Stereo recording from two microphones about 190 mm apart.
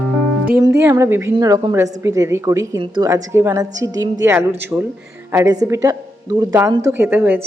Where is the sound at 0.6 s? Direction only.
15° right (ahead or behind).